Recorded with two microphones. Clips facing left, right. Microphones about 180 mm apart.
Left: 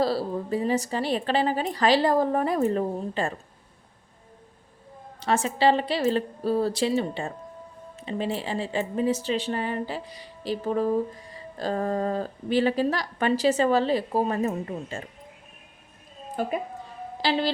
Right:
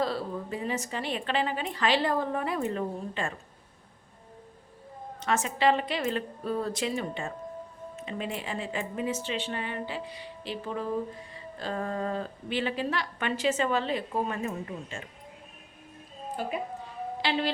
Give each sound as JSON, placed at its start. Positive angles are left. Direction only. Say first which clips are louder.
{"t": 0.0, "sound": "a woman's voice", "louder": "left 5 dB", "side_deg": 35}
{"t": 5.2, "sound": "a woman's voice", "louder": "left 4 dB", "side_deg": 30}
{"t": 17.2, "sound": "a woman's voice", "louder": "left 5 dB", "side_deg": 35}